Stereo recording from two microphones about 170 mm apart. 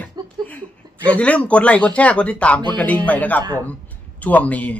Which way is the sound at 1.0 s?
10° left (ahead or behind).